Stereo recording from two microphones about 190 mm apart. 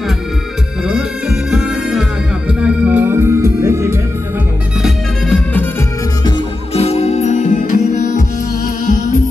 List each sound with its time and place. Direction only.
0.8 s music: 5° right (ahead or behind)
4.8 s music: 5° left (ahead or behind)
6.2 s music: 25° left (ahead or behind)